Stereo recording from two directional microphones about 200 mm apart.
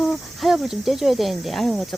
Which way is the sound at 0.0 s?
Centre (ahead or behind).